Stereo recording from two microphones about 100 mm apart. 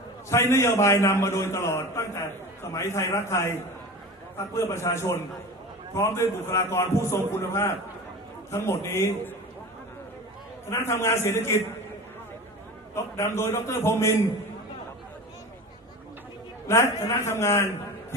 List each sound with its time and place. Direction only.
0.3 s a man's voice: 30° left (ahead or behind)
4.5 s a man's voice: 30° left (ahead or behind)
10.7 s a man's voice: 25° left (ahead or behind)
12.9 s a man's voice: 25° left (ahead or behind)
16.6 s a man's voice: 25° left (ahead or behind)